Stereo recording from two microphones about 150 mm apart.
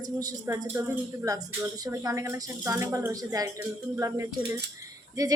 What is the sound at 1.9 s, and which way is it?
A woman's voice, 20° right (ahead or behind).